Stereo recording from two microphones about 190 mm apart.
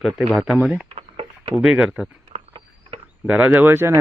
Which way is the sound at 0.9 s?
30° right (ahead or behind).